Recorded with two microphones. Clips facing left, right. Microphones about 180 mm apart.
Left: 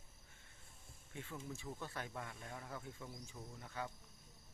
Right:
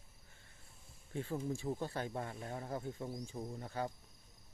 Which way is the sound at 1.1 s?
35° right (ahead or behind).